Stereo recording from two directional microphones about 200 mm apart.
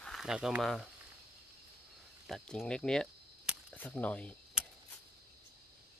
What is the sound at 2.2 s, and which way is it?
Speech, centre (ahead or behind).